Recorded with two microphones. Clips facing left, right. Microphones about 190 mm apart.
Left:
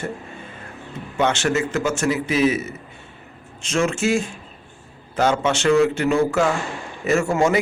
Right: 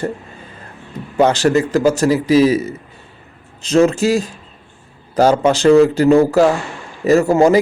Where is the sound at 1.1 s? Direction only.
35° right (ahead or behind).